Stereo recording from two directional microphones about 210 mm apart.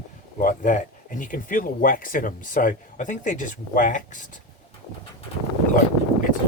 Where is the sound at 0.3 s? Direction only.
40° left (ahead or behind).